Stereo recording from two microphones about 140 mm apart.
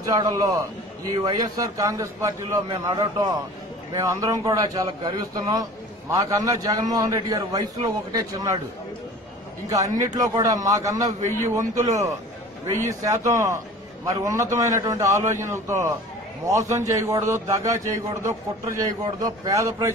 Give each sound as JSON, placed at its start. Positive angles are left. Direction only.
{"t": 0.0, "sound": "a man's voice", "side_deg": -25}
{"t": 9.7, "sound": "a man's voice", "side_deg": -25}